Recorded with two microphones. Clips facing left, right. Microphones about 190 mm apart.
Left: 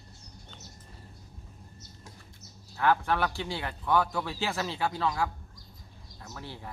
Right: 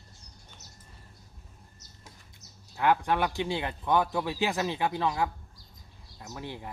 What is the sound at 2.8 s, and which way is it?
A man's voice, 15° right (ahead or behind).